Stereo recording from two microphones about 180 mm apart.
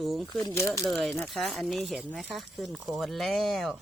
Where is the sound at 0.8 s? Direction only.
Centre (ahead or behind).